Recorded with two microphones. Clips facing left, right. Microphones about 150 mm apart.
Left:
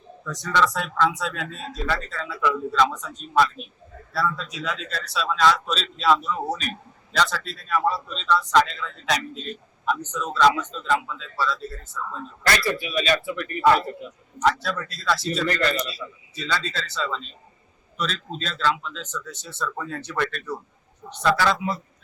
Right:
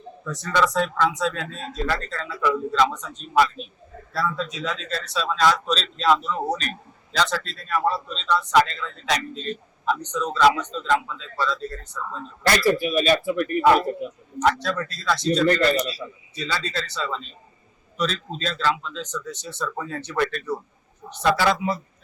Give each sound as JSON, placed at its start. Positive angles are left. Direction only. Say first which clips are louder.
{"t": 0.5, "sound": "a man's voice", "louder": "right 2 dB", "side_deg": 0}
{"t": 12.7, "sound": "speech", "louder": "right 4 dB", "side_deg": -40}
{"t": 14.4, "sound": "a man's voice", "louder": "right 1 dB", "side_deg": 0}
{"t": 15.4, "sound": "speech", "louder": "right 3 dB", "side_deg": -30}
{"t": 16.3, "sound": "a man's voice", "louder": "even", "side_deg": 0}